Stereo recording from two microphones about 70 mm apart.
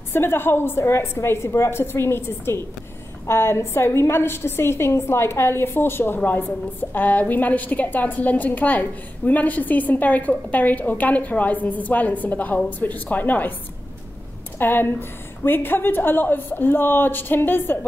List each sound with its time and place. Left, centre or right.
0.1 s a woman's voice: left
14.6 s a woman's voice: left